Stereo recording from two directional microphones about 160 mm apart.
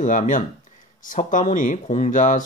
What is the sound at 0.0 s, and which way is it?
Speech, 50° left (ahead or behind).